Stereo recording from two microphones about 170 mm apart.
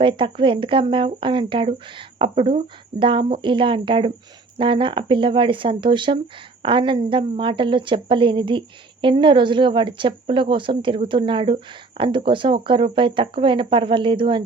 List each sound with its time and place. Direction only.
0.0 s a woman's voice: 30° right (ahead or behind)